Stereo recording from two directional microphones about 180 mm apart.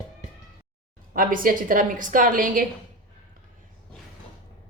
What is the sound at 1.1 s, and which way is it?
A woman's voice, 50° right (ahead or behind).